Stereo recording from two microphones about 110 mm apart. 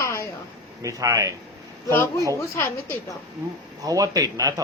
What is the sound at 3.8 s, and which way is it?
Speech, 30° right (ahead or behind).